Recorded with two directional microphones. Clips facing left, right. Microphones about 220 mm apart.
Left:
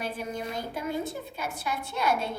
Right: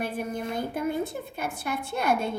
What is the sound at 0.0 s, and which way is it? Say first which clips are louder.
A woman's voice: right 3 dB; 55° right (ahead or behind).